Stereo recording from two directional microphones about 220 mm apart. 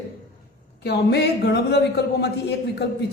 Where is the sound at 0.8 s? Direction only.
50° left (ahead or behind).